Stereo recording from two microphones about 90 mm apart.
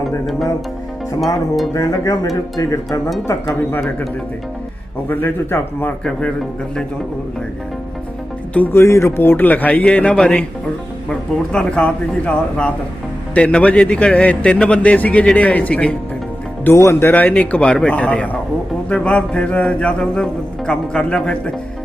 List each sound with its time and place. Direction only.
1.7 s speech: 40° left (ahead or behind)
3.7 s speech: 20° left (ahead or behind)
5.0 s speech: 25° left (ahead or behind)
6.1 s a man's voice: 10° left (ahead or behind)
8.5 s speech: 20° left (ahead or behind)
8.8 s a man's voice: 30° left (ahead or behind); by 16.0 s 15° left (ahead or behind)
16.6 s a man's voice: 30° left (ahead or behind); by 21.5 s 10° left (ahead or behind)